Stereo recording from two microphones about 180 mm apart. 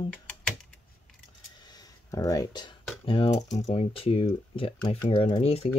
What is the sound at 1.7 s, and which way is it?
Computer keyboard, 20° left (ahead or behind).